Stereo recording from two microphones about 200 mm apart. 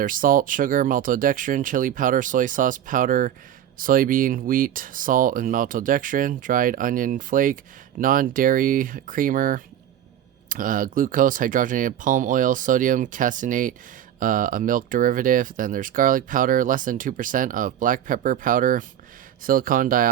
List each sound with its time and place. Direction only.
0.0 s speech: 45° right (ahead or behind)